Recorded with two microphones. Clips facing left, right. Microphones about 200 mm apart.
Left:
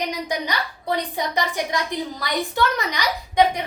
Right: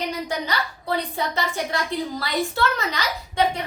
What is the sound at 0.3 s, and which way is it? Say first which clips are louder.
A woman's voice: left 1 dB; 15° left (ahead or behind).